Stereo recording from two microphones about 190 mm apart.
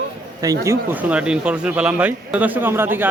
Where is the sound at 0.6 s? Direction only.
10° right (ahead or behind).